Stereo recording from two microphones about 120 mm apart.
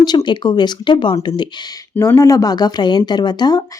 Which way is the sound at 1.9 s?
20° left (ahead or behind).